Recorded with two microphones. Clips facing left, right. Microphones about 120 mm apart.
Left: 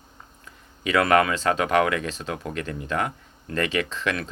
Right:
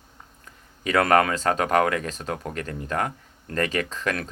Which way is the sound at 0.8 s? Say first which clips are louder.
Even; 40° right (ahead or behind).